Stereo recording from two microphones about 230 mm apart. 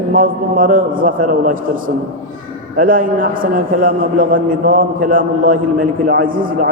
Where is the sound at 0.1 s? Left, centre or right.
Right.